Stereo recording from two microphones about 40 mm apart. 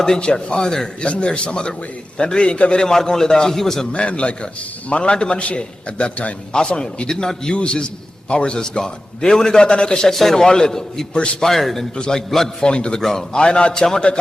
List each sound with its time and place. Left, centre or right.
0.0 s a man's voice: centre
1.0 s a man's voice: left
2.9 s a man's voice: centre
3.9 s a man's voice: left
6.5 s a man's voice: left
11.1 s a man's voice: left
11.4 s a man's voice: centre
11.9 s a man's voice: left
12.3 s a man's voice: centre
12.6 s a man's voice: left
13.0 s a man's voice: centre
13.3 s a man's voice: left